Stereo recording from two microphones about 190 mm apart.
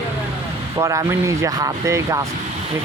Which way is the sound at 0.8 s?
15° right (ahead or behind).